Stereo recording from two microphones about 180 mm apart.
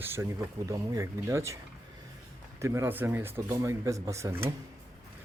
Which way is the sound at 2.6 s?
15° right (ahead or behind).